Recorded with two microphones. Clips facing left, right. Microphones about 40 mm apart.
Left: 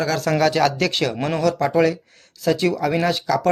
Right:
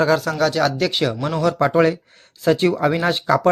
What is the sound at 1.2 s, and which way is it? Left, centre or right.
Speech, left.